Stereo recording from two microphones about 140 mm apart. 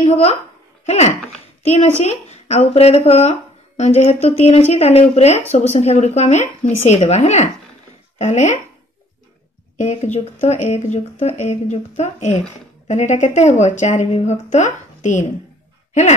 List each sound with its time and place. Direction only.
0.0 s a woman's voice: 50° left (ahead or behind)
9.8 s speech: 60° left (ahead or behind)